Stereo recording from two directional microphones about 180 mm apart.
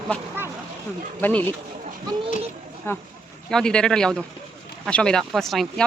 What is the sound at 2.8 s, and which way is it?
Speech, 15° left (ahead or behind).